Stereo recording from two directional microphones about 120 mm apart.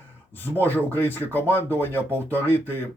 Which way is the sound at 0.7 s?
15° left (ahead or behind).